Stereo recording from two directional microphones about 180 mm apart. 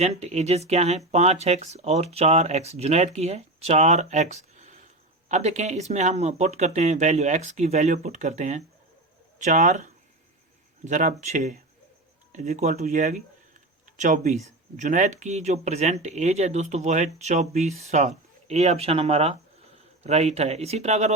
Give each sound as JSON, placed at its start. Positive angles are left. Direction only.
{"t": 0.0, "sound": "speech", "side_deg": -35}